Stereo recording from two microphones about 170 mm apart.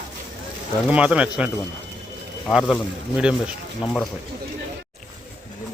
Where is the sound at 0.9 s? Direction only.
5° right (ahead or behind).